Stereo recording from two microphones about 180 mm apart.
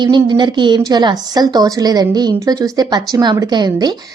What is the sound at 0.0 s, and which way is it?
A woman's voice, 25° right (ahead or behind).